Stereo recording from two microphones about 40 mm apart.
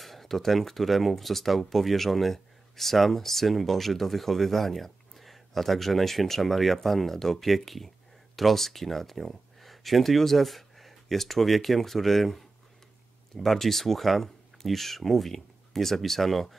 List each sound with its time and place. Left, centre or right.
0.0 s speech: centre